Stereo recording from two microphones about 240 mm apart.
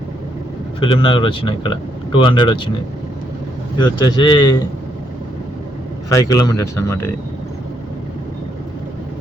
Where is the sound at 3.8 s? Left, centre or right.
Centre.